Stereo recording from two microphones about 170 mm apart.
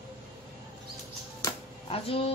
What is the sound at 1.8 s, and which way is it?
Music, 35° left (ahead or behind).